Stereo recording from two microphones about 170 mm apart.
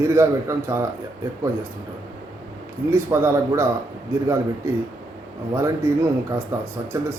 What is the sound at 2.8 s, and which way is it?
Speech, 15° right (ahead or behind).